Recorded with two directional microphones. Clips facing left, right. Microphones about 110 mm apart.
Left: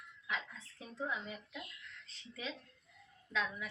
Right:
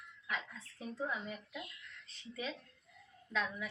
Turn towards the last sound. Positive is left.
turn(degrees=0)  # may be behind; listen again after turning